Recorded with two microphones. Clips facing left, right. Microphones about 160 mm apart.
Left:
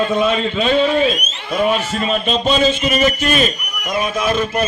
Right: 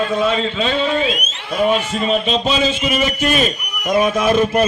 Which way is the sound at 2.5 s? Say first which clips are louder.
Left 2 dB; 40° left (ahead or behind).